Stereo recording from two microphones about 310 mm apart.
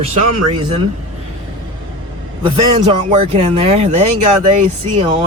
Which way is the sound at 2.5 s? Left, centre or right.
Centre.